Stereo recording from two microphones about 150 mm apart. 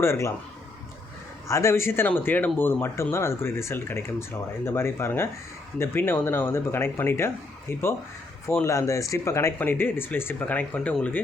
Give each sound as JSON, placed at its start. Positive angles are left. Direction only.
{"t": 0.0, "sound": "speech", "side_deg": 20}
{"t": 1.5, "sound": "speech", "side_deg": 20}